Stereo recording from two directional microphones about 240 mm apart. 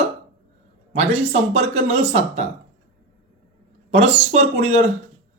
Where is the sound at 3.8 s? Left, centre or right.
Right.